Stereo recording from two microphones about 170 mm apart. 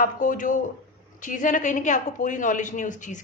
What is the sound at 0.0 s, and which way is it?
A woman's voice, 50° left (ahead or behind).